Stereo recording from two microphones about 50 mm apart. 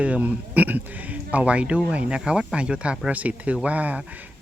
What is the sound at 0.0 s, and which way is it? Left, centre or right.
Speech, right.